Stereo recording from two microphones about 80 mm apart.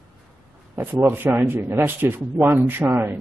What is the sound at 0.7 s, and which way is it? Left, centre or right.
Speech, right.